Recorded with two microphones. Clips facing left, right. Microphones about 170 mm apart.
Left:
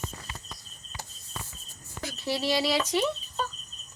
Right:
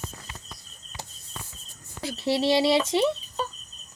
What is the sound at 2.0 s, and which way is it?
Speech, 30° right (ahead or behind).